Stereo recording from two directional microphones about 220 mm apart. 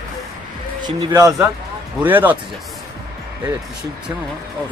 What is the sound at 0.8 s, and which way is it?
Speech, 15° right (ahead or behind).